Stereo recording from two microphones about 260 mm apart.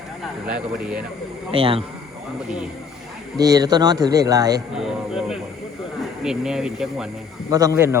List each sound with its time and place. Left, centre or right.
0.2 s speech: centre
1.5 s speech: right
3.4 s speech: centre
4.8 s speech: centre
7.5 s speech: centre